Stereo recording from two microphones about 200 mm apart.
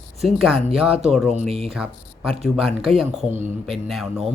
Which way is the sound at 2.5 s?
Centre (ahead or behind).